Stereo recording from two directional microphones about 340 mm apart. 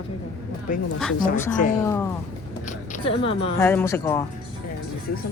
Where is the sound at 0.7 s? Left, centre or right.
Left.